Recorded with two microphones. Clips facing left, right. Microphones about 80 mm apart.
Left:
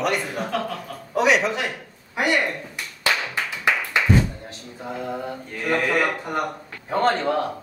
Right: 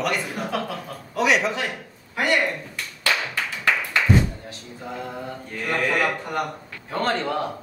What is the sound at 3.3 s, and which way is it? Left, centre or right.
Clapping, centre.